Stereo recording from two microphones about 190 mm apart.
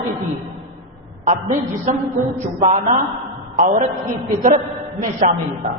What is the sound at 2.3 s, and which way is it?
A man's voice, 40° right (ahead or behind).